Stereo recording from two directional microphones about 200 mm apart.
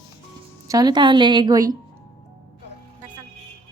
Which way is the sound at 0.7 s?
20° right (ahead or behind).